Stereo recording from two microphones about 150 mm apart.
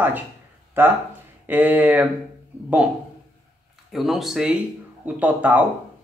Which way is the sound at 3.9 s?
Centre (ahead or behind).